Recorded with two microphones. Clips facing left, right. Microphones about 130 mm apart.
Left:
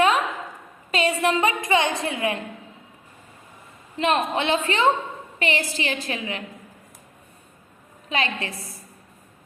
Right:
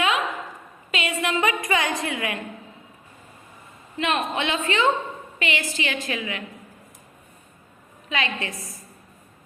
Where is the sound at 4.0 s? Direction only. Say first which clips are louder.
Left 3 dB; 35° left (ahead or behind).